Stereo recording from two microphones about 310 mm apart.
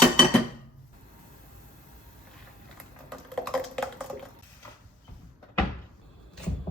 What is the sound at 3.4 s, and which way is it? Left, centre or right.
Typing, centre.